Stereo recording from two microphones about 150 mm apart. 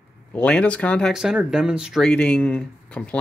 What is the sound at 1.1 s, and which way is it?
Speech, 5° right (ahead or behind).